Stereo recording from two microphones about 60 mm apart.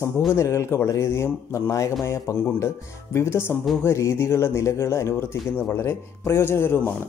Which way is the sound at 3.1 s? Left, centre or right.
Left.